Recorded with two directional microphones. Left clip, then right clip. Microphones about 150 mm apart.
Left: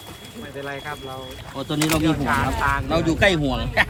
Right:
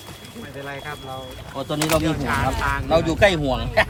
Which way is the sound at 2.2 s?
5° left (ahead or behind).